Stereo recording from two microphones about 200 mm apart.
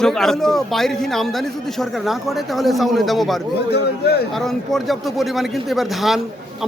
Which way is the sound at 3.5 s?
55° left (ahead or behind).